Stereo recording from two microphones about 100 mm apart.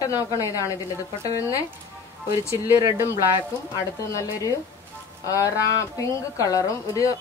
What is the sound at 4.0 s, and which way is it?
A woman's voice, 35° left (ahead or behind).